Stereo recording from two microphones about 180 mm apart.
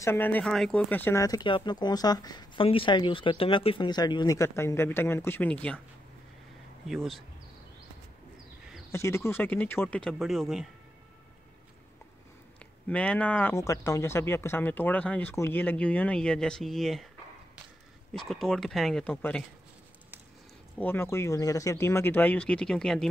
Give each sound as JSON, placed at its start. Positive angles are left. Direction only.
{"t": 0.0, "sound": "speech", "side_deg": 10}
{"t": 6.9, "sound": "speech", "side_deg": 0}
{"t": 8.9, "sound": "speech", "side_deg": 15}
{"t": 12.8, "sound": "speech", "side_deg": 5}
{"t": 18.1, "sound": "speech", "side_deg": 0}
{"t": 20.7, "sound": "speech", "side_deg": 10}